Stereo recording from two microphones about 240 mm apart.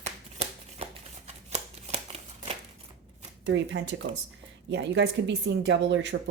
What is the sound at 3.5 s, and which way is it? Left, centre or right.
Speech, right.